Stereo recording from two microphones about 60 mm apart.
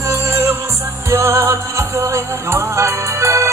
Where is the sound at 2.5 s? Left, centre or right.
Right.